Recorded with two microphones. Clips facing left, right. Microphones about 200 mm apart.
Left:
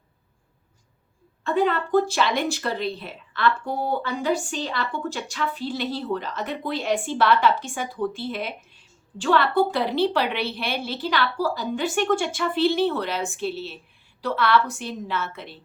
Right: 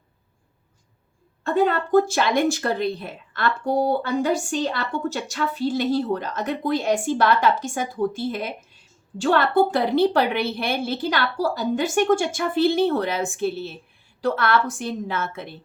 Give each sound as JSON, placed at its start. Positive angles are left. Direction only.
{"t": 1.5, "sound": "speech", "side_deg": -45}